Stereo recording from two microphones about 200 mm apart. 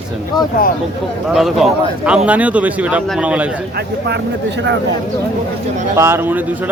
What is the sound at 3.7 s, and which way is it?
Speech, 55° right (ahead or behind).